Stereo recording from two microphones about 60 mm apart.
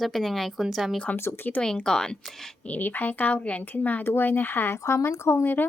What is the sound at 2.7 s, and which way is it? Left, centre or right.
A woman's voice, left.